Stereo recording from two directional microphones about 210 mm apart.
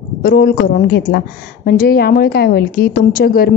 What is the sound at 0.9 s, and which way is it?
A woman's voice, 45° left (ahead or behind).